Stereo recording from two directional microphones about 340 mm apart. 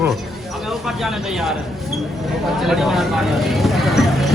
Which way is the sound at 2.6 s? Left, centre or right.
Centre.